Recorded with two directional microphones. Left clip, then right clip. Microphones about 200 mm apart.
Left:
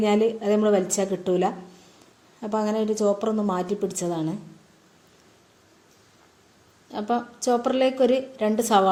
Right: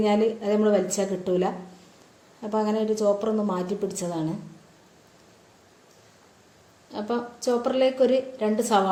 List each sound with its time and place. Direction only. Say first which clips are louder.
0.0 s a woman's voice: left 1 dB; 40° left (ahead or behind)
6.9 s a woman's voice: left 3 dB; 40° left (ahead or behind)